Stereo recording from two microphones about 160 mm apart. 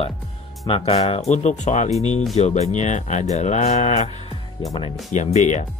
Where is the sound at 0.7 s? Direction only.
35° left (ahead or behind).